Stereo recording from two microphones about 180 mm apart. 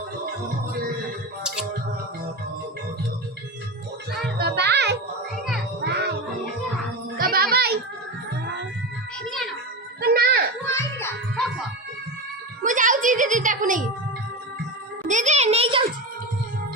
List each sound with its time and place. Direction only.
4.4 s music: 65° right (ahead or behind)
7.2 s child singing: 55° right (ahead or behind)
10.0 s a sound: 60° right (ahead or behind)
10.7 s music: 15° left (ahead or behind)
12.6 s a child's voice: 45° right (ahead or behind)
15.0 s a child's voice: 45° right (ahead or behind)